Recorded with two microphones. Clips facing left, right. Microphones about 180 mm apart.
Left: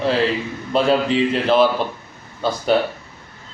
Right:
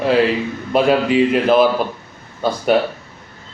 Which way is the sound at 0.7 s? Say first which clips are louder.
Right 2 dB; 10° right (ahead or behind).